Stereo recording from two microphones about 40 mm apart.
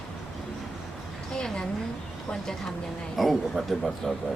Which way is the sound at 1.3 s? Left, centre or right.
Centre.